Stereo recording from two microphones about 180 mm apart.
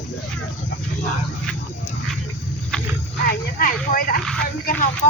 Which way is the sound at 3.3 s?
50° left (ahead or behind).